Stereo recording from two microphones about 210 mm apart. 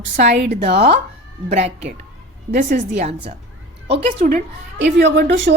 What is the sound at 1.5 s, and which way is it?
Speech, 30° right (ahead or behind).